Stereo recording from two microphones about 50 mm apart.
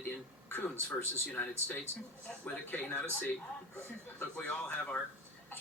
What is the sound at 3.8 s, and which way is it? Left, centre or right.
Speech, left.